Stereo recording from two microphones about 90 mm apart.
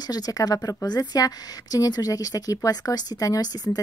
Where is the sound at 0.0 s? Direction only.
45° left (ahead or behind).